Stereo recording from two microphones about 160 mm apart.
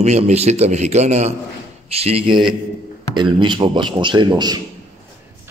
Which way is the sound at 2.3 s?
Centre (ahead or behind).